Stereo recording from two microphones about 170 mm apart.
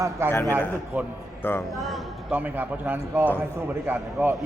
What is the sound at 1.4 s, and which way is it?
Speech, 10° left (ahead or behind).